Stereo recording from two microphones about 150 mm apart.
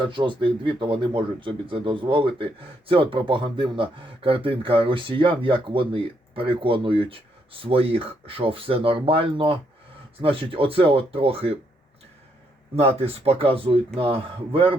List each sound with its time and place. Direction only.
0.0 s speech: 30° right (ahead or behind)
12.7 s speech: 40° right (ahead or behind)